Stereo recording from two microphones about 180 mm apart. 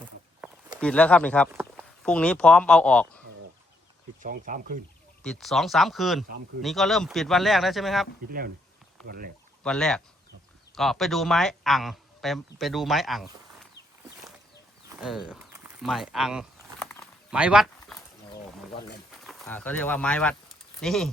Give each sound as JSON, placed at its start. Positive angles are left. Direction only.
{"t": 0.8, "sound": "speech", "side_deg": 5}
{"t": 4.2, "sound": "speech", "side_deg": -45}
{"t": 5.2, "sound": "speech", "side_deg": 0}
{"t": 9.0, "sound": "speech", "side_deg": -55}
{"t": 9.6, "sound": "speech", "side_deg": 5}
{"t": 15.0, "sound": "speech", "side_deg": -5}
{"t": 17.0, "sound": "a sound", "side_deg": -5}
{"t": 19.2, "sound": "speech", "side_deg": 0}